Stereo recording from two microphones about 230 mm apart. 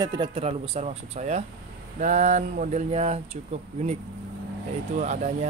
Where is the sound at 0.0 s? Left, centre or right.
Centre.